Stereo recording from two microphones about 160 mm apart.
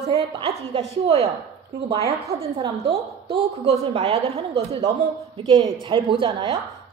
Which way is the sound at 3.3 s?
35° right (ahead or behind).